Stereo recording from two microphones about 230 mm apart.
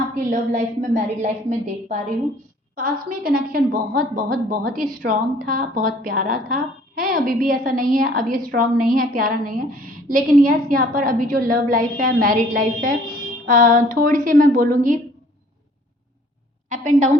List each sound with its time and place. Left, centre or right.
0.3 s a woman's voice: right